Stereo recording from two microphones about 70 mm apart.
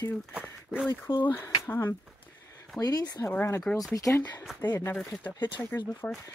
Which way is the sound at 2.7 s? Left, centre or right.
Left.